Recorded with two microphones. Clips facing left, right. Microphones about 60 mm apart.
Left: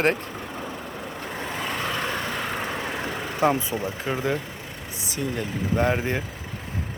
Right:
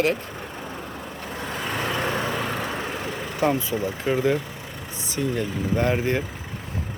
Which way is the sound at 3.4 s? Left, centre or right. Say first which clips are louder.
Left 1 dB; centre.